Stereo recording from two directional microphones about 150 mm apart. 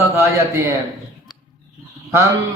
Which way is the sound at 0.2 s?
20° right (ahead or behind).